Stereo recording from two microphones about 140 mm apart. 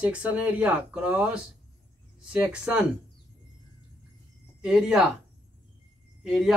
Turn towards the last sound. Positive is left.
turn(degrees=0)  # may be behind; listen again after turning